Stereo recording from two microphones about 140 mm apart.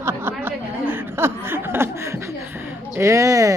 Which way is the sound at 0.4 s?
15° right (ahead or behind).